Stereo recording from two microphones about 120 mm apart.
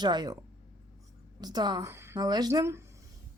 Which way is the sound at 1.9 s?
20° right (ahead or behind).